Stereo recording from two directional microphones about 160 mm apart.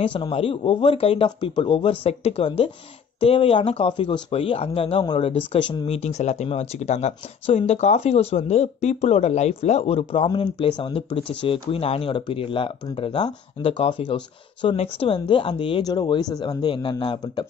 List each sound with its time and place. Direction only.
0.0 s speech: 35° left (ahead or behind)
5.9 s speech: 45° left (ahead or behind)